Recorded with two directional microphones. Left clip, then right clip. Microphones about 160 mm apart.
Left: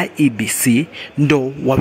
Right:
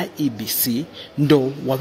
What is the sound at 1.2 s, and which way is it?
Speech, 25° left (ahead or behind).